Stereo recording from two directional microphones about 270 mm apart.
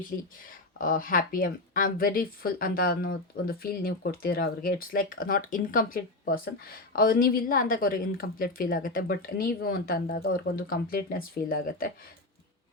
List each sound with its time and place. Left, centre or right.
0.8 s a woman's voice: left